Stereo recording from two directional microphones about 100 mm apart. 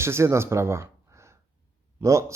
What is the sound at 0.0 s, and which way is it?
A man's voice, 25° right (ahead or behind).